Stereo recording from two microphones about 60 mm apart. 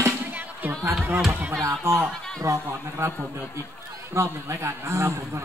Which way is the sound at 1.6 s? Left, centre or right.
Right.